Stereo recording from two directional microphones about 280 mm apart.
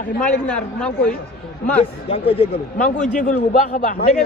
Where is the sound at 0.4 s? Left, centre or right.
Centre.